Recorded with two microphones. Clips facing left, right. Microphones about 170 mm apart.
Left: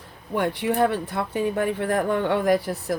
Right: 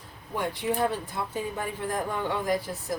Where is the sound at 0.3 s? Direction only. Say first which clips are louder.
Left 6 dB; 65° left (ahead or behind).